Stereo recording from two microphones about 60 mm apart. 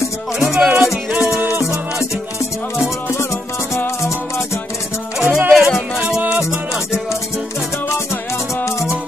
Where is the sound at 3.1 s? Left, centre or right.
Left.